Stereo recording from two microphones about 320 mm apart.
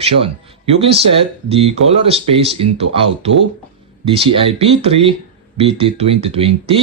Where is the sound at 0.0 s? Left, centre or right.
Centre.